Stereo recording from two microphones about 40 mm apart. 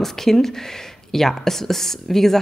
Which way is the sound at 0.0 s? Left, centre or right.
Centre.